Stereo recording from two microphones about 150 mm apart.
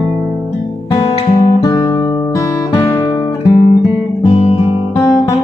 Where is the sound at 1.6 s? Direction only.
20° left (ahead or behind).